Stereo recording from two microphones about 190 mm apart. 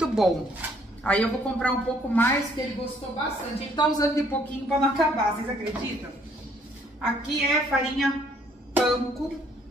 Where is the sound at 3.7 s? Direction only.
20° left (ahead or behind).